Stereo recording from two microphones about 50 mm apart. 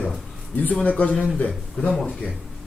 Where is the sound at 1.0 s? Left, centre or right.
Left.